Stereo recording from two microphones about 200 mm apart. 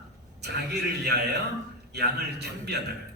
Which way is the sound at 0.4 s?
55° right (ahead or behind).